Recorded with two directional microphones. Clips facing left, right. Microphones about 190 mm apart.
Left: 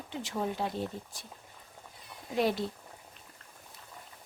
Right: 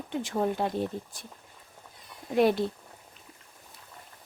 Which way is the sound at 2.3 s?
60° right (ahead or behind).